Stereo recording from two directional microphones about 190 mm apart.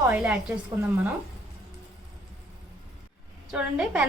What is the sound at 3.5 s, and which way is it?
Speech, 5° right (ahead or behind).